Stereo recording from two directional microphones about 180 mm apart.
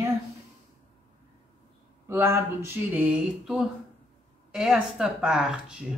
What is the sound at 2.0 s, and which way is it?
Speech, 15° right (ahead or behind).